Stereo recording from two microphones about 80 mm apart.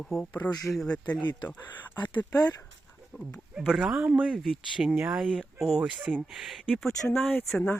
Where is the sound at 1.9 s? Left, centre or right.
Left.